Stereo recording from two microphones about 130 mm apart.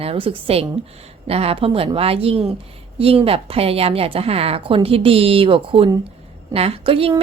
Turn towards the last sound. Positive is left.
turn(degrees=-45)  # may be behind; listen again after turning